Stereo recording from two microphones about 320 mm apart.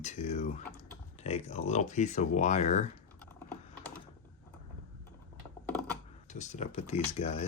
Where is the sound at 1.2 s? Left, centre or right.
Centre.